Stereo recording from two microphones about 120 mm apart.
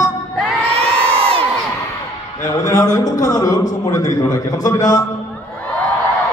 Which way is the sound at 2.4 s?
25° left (ahead or behind).